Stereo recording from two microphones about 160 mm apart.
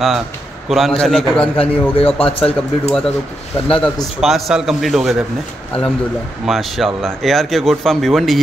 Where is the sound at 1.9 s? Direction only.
35° left (ahead or behind).